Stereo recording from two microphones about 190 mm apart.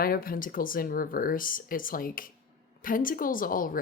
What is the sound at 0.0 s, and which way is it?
Speech, 50° left (ahead or behind).